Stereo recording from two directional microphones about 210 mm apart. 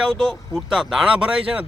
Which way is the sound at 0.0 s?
Centre (ahead or behind).